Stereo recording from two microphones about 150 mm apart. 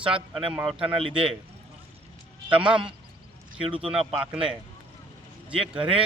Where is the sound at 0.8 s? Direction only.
35° right (ahead or behind).